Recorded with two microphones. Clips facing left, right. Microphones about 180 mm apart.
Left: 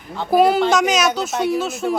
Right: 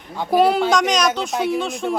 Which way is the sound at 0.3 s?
5° left (ahead or behind).